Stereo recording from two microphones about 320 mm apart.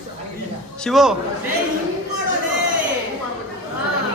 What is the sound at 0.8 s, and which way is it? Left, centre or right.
Speech, centre.